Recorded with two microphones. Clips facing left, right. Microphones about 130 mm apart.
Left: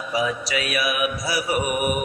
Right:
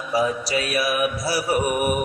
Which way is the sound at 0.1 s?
35° right (ahead or behind).